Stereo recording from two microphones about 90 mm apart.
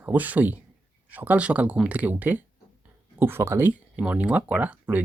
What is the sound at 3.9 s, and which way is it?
Speech, 15° right (ahead or behind).